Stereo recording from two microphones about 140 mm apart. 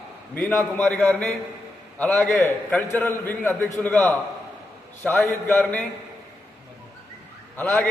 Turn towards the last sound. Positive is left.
turn(degrees=10)  # may be behind; listen again after turning